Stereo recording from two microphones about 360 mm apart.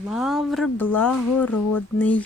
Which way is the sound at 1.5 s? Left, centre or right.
Left.